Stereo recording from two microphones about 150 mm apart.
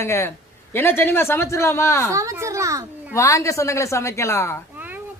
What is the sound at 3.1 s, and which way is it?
A woman's voice, 20° left (ahead or behind).